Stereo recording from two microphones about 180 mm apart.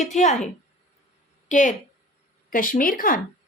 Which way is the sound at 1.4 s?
45° left (ahead or behind).